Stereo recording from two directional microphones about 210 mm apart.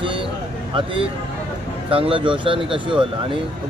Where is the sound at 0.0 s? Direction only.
25° right (ahead or behind).